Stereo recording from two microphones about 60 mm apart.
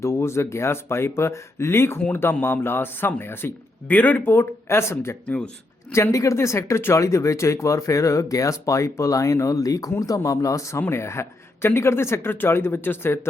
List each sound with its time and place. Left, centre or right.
0.0 s speech: left
4.3 s speech: left
5.2 s speech: left
5.9 s speech: left
10.2 s speech: left
10.8 s speech: left